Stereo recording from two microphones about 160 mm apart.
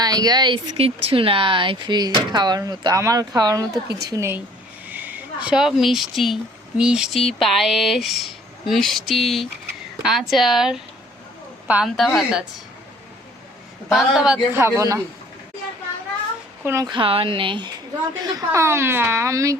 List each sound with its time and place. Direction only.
0.0 s speech: 25° right (ahead or behind); by 12.4 s centre (ahead or behind)
13.9 s speech: centre (ahead or behind)
14.6 s speech: 15° right (ahead or behind)
16.6 s speech: 20° right (ahead or behind)
16.9 s speech: 35° right (ahead or behind)
18.2 s speech: 20° right (ahead or behind)